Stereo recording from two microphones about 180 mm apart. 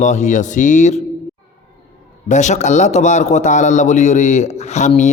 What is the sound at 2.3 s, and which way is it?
Speech, 40° left (ahead or behind).